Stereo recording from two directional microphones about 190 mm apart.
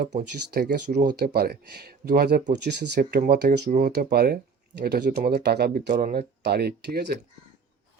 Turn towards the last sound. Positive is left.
turn(degrees=-60)  # may be behind; listen again after turning